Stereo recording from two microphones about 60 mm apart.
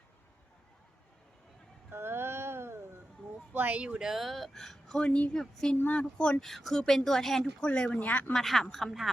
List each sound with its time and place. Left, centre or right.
1.9 s a sound: right
3.5 s speech: right
3.8 s speech: centre
5.9 s speech: centre
6.4 s speech: centre
7.6 s speech: centre
8.3 s speech: centre